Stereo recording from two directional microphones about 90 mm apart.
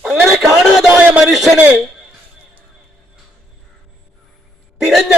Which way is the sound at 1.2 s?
Centre (ahead or behind).